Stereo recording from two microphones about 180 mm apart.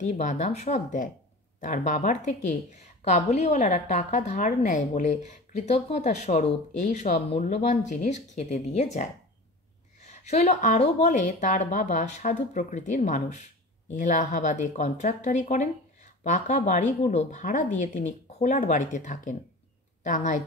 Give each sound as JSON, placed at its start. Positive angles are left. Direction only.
{"t": 0.0, "sound": "a woman's voice", "side_deg": 40}